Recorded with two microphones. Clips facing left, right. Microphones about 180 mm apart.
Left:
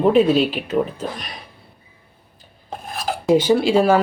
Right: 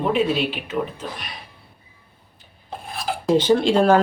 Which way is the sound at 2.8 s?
45° left (ahead or behind).